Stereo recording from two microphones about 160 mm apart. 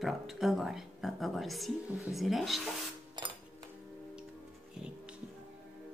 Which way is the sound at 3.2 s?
25° right (ahead or behind).